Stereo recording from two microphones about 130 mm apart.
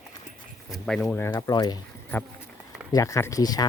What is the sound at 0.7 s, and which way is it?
Speech, 5° left (ahead or behind).